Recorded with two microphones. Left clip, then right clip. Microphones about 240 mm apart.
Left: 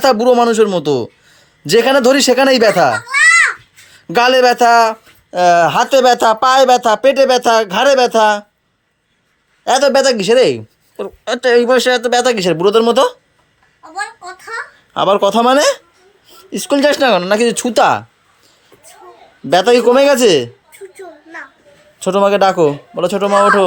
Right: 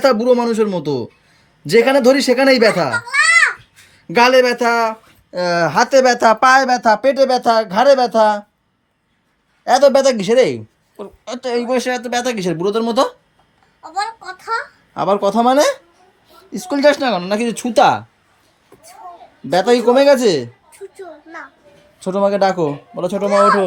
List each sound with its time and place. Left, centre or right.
0.0 s speech: centre
4.0 s speech: centre
6.1 s speech: centre
6.8 s speech: centre
9.6 s speech: centre
14.9 s speech: centre
19.5 s speech: centre
22.0 s speech: centre